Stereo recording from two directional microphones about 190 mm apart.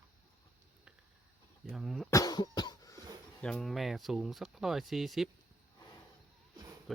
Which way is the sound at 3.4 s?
5° left (ahead or behind).